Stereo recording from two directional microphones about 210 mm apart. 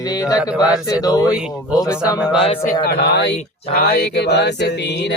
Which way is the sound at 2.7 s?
50° left (ahead or behind).